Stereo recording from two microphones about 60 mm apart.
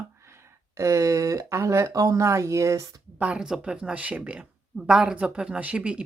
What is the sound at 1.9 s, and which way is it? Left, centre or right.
Speech, right.